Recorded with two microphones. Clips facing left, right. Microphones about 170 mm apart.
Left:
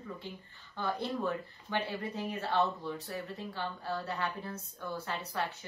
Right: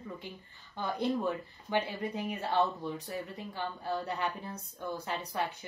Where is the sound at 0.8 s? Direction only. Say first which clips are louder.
Right 2 dB; 15° right (ahead or behind).